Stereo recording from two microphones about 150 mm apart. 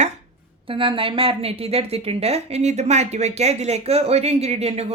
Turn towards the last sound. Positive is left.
turn(degrees=-45)  # may be behind; listen again after turning